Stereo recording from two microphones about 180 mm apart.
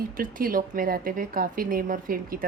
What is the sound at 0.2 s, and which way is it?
A woman's voice, 50° right (ahead or behind).